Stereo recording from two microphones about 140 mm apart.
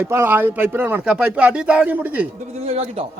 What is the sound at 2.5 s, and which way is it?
Speech, 45° right (ahead or behind).